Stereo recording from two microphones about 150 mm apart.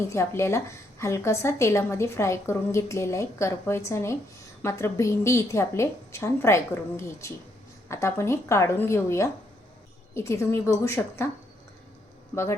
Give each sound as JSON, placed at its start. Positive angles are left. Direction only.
{"t": 0.1, "sound": "a woman's voice", "side_deg": 20}
{"t": 12.3, "sound": "a man's voice", "side_deg": 15}